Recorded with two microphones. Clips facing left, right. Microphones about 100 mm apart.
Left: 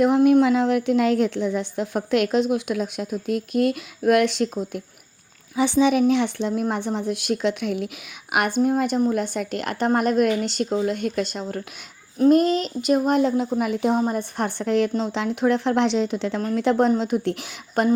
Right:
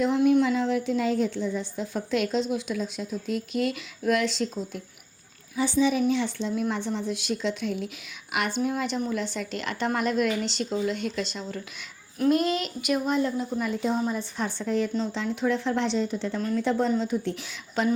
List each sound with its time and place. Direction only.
0.0 s a woman's voice: 55° left (ahead or behind)
12.3 s a child's voice: 40° left (ahead or behind)
13.1 s speech: 75° left (ahead or behind)
17.8 s a woman's voice: 55° left (ahead or behind)